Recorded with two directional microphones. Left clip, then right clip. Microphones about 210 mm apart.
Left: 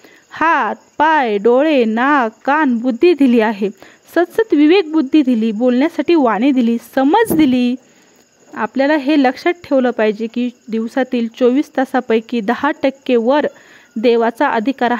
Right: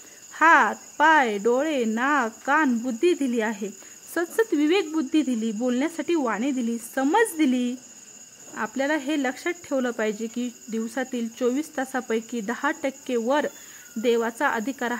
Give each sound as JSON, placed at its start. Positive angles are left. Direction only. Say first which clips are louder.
{"t": 0.3, "sound": "speech", "louder": "left 3 dB", "side_deg": 40}